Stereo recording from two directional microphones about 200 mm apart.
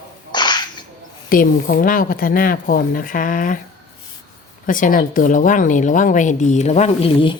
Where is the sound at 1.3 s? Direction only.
45° left (ahead or behind).